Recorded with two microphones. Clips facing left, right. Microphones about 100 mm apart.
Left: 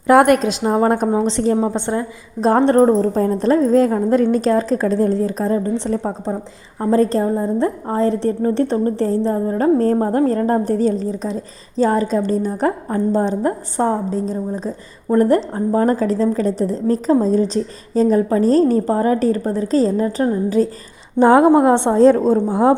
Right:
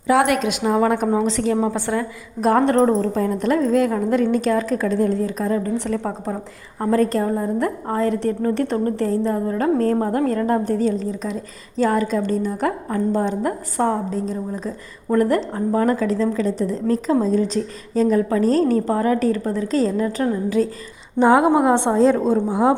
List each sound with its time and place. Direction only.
0.1 s a woman's voice: 45° left (ahead or behind)
0.4 s a woman's voice: 35° left (ahead or behind)
1.0 s a woman's voice: 25° left (ahead or behind)